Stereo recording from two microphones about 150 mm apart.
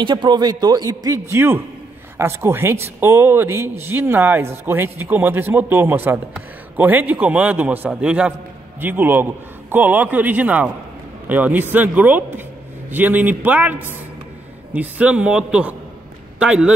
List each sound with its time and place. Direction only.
0.0 s a man's voice: 30° right (ahead or behind); by 16.7 s 5° right (ahead or behind)